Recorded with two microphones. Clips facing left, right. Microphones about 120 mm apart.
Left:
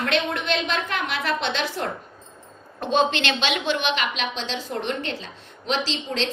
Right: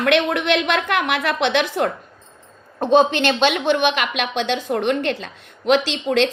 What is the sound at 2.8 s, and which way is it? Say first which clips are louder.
A woman's voice: right 6 dB; 50° right (ahead or behind).